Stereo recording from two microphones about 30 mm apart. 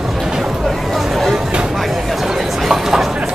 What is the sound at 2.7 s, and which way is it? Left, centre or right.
Vehicle, centre.